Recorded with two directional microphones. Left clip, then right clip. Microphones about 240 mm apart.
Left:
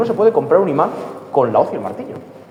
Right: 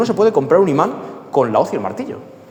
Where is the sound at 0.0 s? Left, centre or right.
Right.